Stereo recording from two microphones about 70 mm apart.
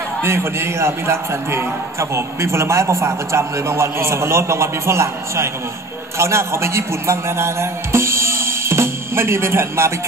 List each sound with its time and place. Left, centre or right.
0.2 s a man's voice: right